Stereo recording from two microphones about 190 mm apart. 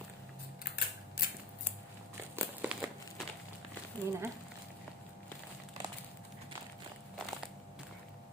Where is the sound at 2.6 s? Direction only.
5° right (ahead or behind).